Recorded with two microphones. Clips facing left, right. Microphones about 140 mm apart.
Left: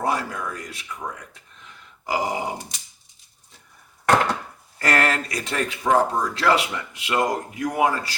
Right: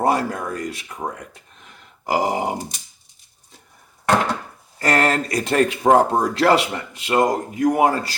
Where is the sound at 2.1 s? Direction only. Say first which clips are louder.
Right 4 dB; 50° right (ahead or behind).